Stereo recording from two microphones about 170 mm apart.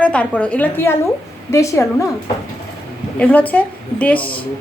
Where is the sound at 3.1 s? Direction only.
10° left (ahead or behind).